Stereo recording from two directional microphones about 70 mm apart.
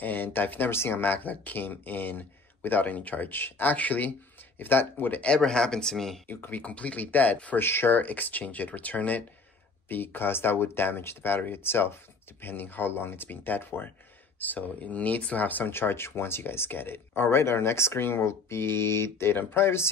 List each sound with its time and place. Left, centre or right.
0.0 s speech: left
5.3 s speech: centre
6.2 s speech: left
7.6 s speech: left